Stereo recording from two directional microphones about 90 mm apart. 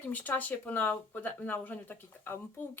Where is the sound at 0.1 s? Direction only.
20° left (ahead or behind).